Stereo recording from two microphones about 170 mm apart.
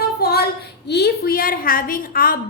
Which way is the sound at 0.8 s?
75° left (ahead or behind).